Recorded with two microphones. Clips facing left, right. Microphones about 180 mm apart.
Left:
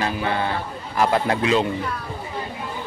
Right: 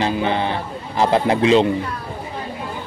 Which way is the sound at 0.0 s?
20° right (ahead or behind).